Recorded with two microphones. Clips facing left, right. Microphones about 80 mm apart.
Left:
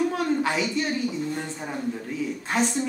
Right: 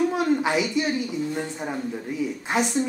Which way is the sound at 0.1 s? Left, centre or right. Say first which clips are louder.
Right 2 dB; centre.